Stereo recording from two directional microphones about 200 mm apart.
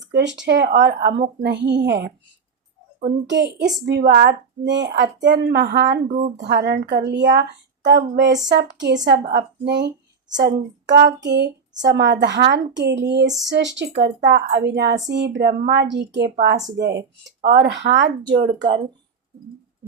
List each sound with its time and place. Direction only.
0.1 s a woman's voice: 60° right (ahead or behind)
3.2 s a woman's voice: 60° right (ahead or behind)
6.1 s speech: 35° right (ahead or behind)
6.4 s a woman's voice: 55° right (ahead or behind)